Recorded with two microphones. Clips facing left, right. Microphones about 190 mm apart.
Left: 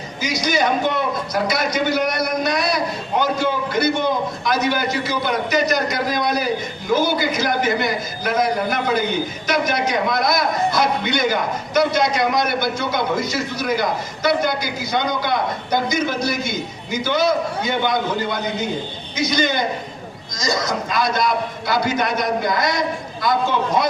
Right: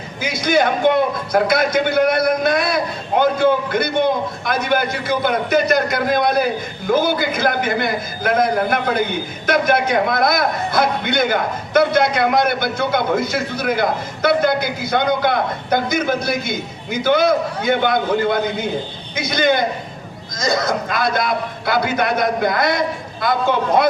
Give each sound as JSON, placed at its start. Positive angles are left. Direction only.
{"t": 0.2, "sound": "a man's voice", "side_deg": -55}